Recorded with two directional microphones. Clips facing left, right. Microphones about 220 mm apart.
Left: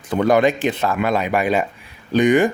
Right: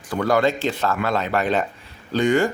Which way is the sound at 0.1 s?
20° left (ahead or behind).